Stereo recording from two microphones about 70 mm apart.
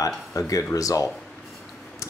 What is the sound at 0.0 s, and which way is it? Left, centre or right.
Speech, left.